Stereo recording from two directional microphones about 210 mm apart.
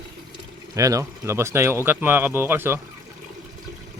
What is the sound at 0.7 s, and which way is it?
Speech, 15° right (ahead or behind).